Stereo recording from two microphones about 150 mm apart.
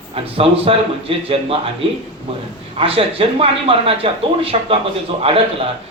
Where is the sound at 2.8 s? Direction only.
40° right (ahead or behind).